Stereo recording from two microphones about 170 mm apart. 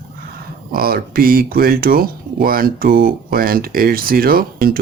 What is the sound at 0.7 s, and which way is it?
Speech, 60° right (ahead or behind).